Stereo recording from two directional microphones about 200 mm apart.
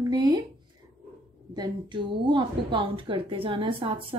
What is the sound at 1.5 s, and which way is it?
A woman's voice, 20° right (ahead or behind).